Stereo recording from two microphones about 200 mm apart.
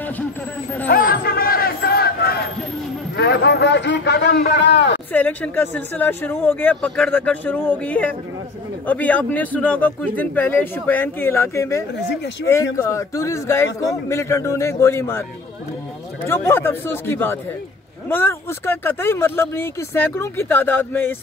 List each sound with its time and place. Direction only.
0.8 s a sound: 45° left (ahead or behind)
3.2 s a man's voice: 55° left (ahead or behind)
5.1 s speech: 10° left (ahead or behind)
16.3 s speech: 15° left (ahead or behind)